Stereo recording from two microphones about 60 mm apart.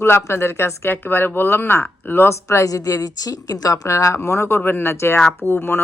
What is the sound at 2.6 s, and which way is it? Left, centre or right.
A woman's voice, left.